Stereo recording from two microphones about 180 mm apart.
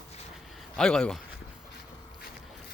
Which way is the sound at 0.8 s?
5° left (ahead or behind).